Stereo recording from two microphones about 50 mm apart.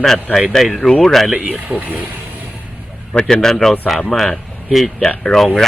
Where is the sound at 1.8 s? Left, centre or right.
Right.